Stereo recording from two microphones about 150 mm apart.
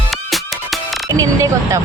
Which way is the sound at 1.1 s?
25° right (ahead or behind).